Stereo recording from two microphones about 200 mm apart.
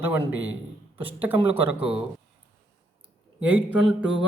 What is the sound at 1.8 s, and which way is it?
Speech, 30° right (ahead or behind).